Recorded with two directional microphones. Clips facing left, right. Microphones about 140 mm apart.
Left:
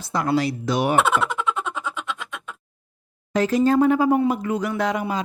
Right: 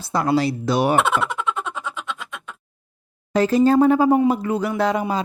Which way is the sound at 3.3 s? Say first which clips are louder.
Right 3 dB; 30° right (ahead or behind).